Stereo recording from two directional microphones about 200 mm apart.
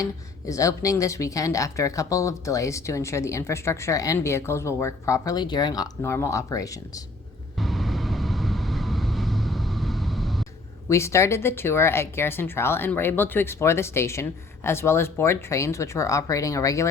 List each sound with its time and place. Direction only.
0.0 s speech: 15° left (ahead or behind)
7.6 s vehicle: centre (ahead or behind)
10.8 s speech: 15° left (ahead or behind)